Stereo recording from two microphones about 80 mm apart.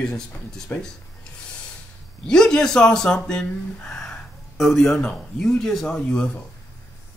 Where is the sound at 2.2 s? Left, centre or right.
Centre.